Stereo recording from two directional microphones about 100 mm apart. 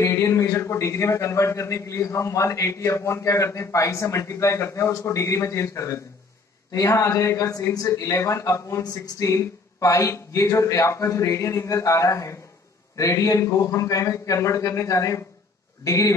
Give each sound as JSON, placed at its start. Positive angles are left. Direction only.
{"t": 0.0, "sound": "a man's voice", "side_deg": 30}